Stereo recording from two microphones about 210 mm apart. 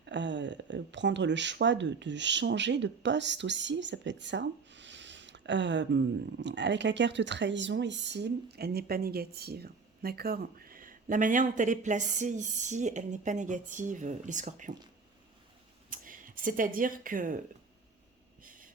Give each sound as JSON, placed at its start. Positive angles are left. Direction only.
{"t": 0.0, "sound": "speech", "side_deg": -60}
{"t": 15.9, "sound": "speech", "side_deg": -40}